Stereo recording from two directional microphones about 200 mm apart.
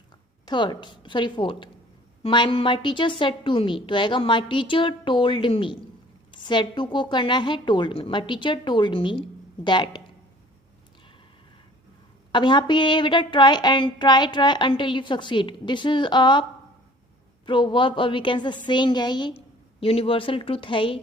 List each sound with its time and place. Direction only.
0.4 s a woman's voice: 20° left (ahead or behind)
12.3 s a woman's voice: 25° left (ahead or behind)